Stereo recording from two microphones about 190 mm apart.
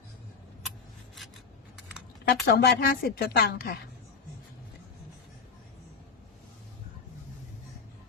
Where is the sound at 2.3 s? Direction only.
55° left (ahead or behind).